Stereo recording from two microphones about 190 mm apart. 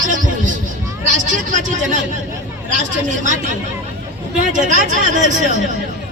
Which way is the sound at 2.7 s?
40° right (ahead or behind).